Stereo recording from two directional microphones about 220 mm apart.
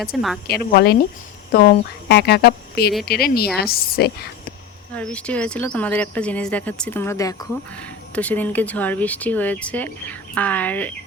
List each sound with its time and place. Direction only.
0.4 s a woman's voice: 45° left (ahead or behind)
4.9 s speech: 5° left (ahead or behind)